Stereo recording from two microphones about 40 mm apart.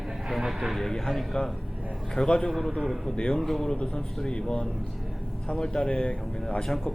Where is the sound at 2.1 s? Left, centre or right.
Centre.